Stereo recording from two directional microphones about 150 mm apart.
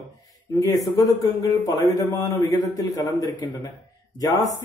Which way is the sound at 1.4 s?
20° left (ahead or behind).